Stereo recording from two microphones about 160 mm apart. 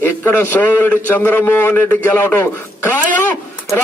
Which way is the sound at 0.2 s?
15° left (ahead or behind).